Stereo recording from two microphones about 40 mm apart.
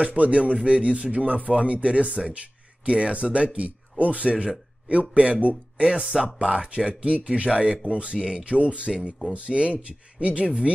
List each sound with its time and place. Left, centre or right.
0.0 s speech: right